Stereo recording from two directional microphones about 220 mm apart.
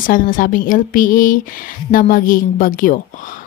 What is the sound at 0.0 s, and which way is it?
Speech, 40° left (ahead or behind).